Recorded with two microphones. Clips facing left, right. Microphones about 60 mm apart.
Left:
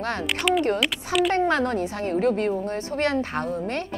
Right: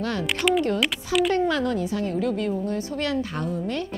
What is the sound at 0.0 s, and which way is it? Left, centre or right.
Speech, left.